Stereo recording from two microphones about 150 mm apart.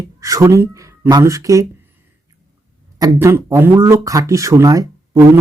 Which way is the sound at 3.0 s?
15° right (ahead or behind).